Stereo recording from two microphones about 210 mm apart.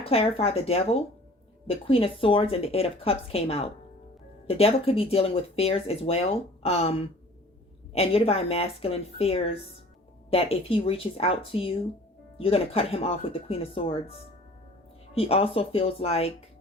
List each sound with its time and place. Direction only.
0.0 s speech: 30° left (ahead or behind)
7.9 s speech: 30° left (ahead or behind)